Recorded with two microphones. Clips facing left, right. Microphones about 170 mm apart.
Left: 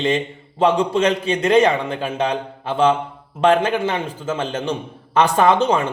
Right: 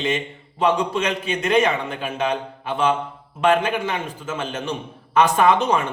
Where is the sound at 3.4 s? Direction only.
30° left (ahead or behind).